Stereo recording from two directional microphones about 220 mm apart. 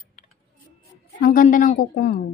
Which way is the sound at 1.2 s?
40° left (ahead or behind).